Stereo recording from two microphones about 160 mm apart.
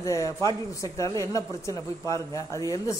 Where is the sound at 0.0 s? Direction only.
20° left (ahead or behind).